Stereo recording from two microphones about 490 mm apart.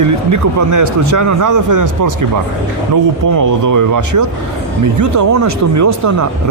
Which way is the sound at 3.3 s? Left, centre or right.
Right.